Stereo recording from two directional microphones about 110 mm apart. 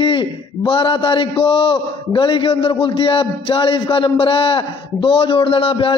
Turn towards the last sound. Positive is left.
turn(degrees=50)  # may be behind; listen again after turning